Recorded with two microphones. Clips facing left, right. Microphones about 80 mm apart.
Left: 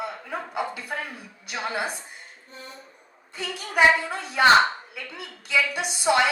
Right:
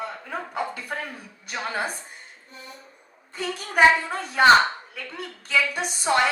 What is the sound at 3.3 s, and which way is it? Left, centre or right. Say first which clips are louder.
A woman's voice: right 2 dB; right.